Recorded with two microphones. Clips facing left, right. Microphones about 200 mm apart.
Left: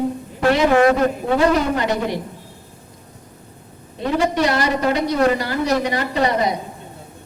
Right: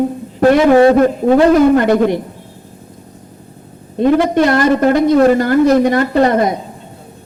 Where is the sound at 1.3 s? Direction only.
50° right (ahead or behind).